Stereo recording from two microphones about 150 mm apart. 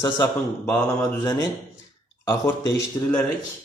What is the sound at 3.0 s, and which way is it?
Speech, 25° left (ahead or behind).